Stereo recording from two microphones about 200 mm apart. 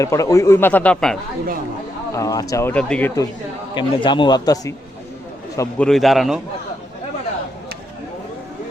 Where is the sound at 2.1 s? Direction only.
15° left (ahead or behind).